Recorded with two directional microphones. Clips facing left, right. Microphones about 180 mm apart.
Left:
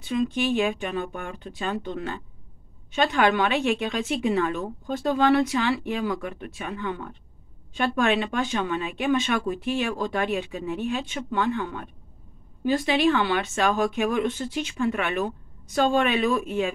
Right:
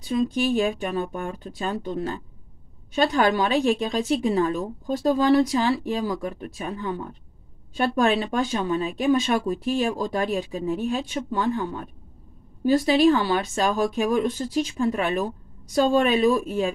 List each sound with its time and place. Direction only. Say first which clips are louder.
0.0 s a woman's voice: right 2 dB; 35° right (ahead or behind)